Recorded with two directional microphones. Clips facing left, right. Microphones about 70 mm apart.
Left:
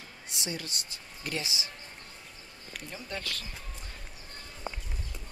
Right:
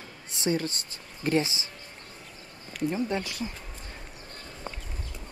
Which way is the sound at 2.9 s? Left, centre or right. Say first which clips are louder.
Right 7 dB; right.